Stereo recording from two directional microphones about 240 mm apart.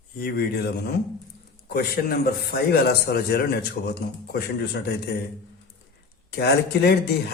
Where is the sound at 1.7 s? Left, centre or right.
Left.